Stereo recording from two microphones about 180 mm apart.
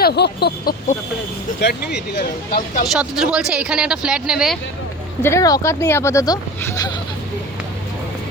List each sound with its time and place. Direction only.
0.0 s speech: 65° left (ahead or behind); by 2.8 s 50° left (ahead or behind)
2.8 s speech: centre (ahead or behind)
5.2 s speech: 15° left (ahead or behind)